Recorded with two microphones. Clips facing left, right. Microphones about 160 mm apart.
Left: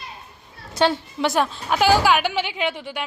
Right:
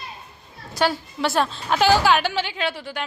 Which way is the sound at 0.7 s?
25° left (ahead or behind).